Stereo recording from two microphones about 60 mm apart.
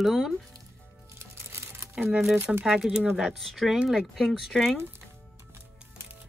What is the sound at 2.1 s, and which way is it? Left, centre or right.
Speech, centre.